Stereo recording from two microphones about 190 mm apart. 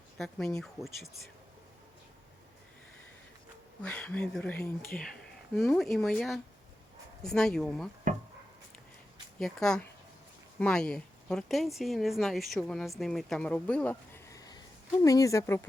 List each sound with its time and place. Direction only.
0.2 s speech: centre (ahead or behind)
3.8 s speech: 5° left (ahead or behind)
9.4 s speech: 5° left (ahead or behind)